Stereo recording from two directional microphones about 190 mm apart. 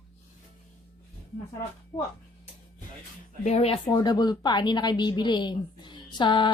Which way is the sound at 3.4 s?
35° left (ahead or behind).